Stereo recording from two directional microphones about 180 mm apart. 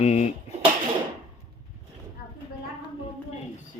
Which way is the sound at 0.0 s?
35° left (ahead or behind).